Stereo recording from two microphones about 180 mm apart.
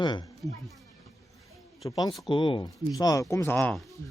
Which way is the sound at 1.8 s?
20° left (ahead or behind).